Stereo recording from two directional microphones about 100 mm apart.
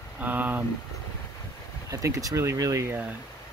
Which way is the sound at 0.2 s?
15° right (ahead or behind).